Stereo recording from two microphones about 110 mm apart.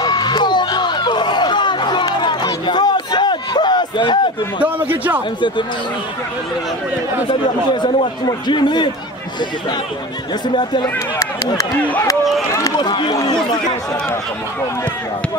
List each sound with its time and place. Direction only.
0.0 s a sound: 40° left (ahead or behind)
4.6 s a man's voice: 15° right (ahead or behind)
7.2 s speech: 45° left (ahead or behind)
10.4 s speech: 45° left (ahead or behind)
11.1 s a sound: 30° left (ahead or behind)
11.8 s speech: 15° left (ahead or behind)
12.7 s speech: 45° left (ahead or behind)
13.1 s speech: 35° left (ahead or behind)